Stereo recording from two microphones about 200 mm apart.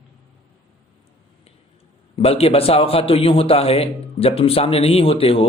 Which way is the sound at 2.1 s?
30° left (ahead or behind).